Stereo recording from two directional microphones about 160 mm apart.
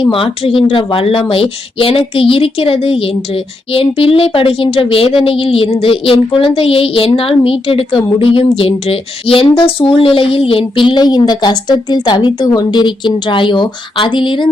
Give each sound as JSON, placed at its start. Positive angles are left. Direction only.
{"t": 0.0, "sound": "a woman's voice", "side_deg": 35}